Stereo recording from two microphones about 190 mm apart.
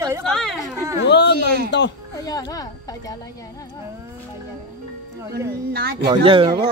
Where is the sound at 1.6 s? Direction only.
65° left (ahead or behind).